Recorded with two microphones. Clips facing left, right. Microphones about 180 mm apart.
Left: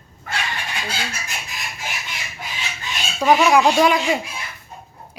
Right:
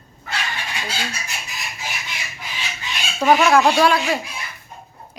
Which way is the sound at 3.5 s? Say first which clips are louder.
Even; 15° left (ahead or behind).